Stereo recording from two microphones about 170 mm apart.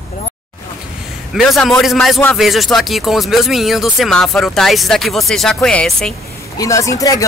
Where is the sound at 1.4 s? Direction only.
Centre (ahead or behind).